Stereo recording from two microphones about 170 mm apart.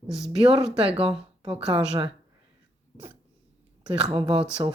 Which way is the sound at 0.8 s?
35° right (ahead or behind).